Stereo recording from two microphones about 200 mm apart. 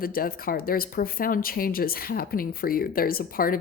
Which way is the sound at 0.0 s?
45° left (ahead or behind).